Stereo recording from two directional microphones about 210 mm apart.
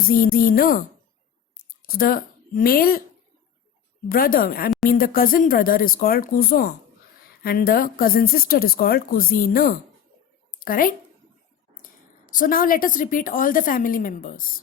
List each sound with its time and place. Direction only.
0.0 s speech: 45° left (ahead or behind)
1.8 s speech: 45° left (ahead or behind)
4.1 s a woman's voice: 45° left (ahead or behind)